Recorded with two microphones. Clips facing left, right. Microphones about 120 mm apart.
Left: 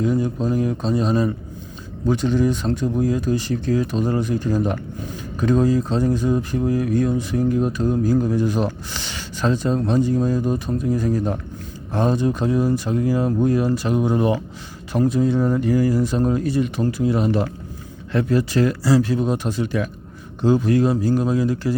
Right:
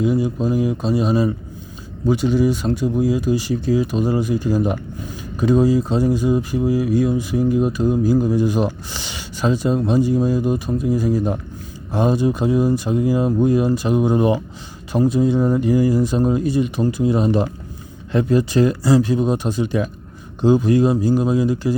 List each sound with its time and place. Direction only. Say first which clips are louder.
0.0 s speech: right 2 dB; 10° right (ahead or behind)